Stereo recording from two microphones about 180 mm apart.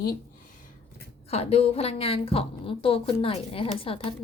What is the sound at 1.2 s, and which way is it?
A woman's voice, 35° left (ahead or behind).